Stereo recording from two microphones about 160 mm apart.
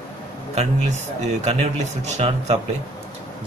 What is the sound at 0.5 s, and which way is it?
Speech, 45° right (ahead or behind).